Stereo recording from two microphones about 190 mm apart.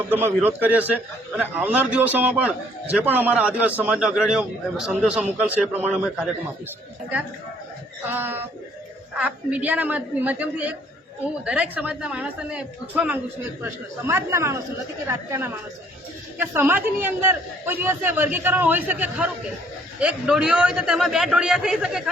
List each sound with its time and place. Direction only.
0.1 s a man's voice: 10° right (ahead or behind)
8.0 s a man's voice: 10° right (ahead or behind)